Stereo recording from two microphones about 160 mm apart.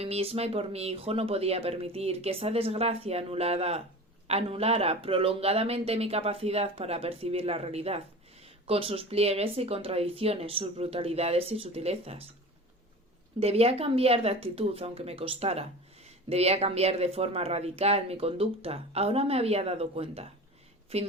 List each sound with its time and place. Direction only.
0.0 s speech: 40° right (ahead or behind)
13.4 s speech: 40° right (ahead or behind)